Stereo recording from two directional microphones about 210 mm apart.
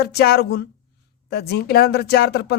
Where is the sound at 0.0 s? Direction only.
50° left (ahead or behind).